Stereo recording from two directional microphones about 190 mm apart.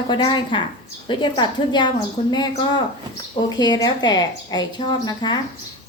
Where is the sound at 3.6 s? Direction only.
20° left (ahead or behind).